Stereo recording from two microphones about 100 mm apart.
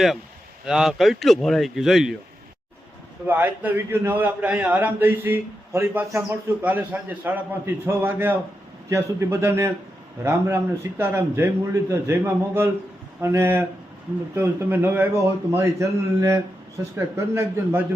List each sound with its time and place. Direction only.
0.6 s speech: 5° right (ahead or behind)
3.2 s a man's voice: 20° right (ahead or behind)